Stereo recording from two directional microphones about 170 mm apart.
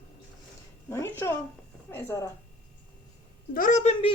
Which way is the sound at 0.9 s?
15° left (ahead or behind).